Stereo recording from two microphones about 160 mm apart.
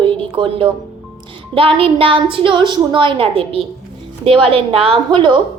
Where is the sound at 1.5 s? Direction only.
35° right (ahead or behind).